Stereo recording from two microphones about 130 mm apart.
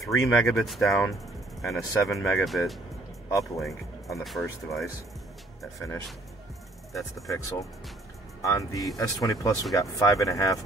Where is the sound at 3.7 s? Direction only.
25° left (ahead or behind).